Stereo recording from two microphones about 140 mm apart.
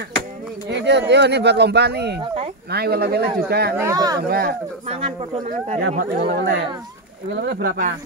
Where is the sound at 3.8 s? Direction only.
25° right (ahead or behind).